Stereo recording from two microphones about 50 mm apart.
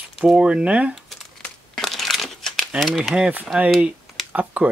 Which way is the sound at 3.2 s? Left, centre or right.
Right.